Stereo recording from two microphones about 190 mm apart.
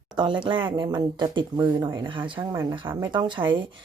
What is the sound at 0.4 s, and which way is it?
Speech, 25° right (ahead or behind).